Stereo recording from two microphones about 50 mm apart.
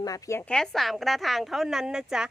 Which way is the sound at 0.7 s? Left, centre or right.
Centre.